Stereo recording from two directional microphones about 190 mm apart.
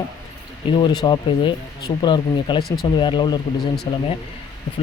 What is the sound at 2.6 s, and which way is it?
Speech, 55° left (ahead or behind).